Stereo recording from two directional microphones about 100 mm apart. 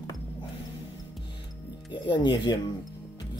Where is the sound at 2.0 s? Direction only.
50° left (ahead or behind).